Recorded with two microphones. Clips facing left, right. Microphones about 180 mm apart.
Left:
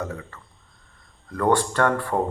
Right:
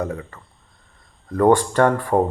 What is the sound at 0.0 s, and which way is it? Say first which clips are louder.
Speech: right 5 dB; 15° right (ahead or behind).